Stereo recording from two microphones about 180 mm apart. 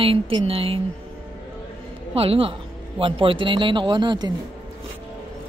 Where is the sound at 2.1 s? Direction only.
30° right (ahead or behind).